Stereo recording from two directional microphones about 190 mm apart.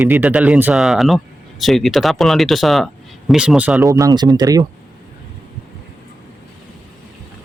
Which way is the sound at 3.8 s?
20° right (ahead or behind).